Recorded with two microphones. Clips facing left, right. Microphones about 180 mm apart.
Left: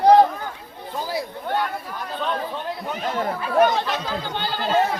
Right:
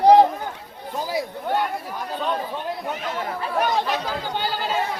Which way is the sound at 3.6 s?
Centre (ahead or behind).